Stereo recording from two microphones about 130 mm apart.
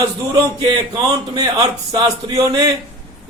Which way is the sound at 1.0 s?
35° right (ahead or behind).